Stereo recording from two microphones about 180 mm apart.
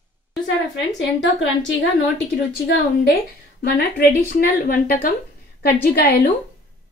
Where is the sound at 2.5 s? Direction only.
60° left (ahead or behind).